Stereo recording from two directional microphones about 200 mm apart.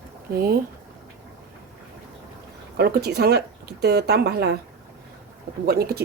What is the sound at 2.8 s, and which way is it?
Speech, 55° right (ahead or behind).